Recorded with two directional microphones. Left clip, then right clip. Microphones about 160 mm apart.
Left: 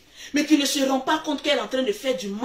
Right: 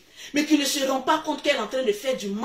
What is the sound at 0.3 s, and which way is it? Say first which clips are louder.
Speech: left 1 dB; 25° left (ahead or behind).